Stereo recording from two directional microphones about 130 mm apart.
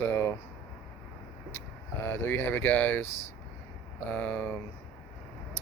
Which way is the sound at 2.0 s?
20° left (ahead or behind).